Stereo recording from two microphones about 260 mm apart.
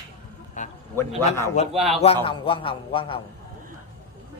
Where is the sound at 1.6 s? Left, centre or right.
Left.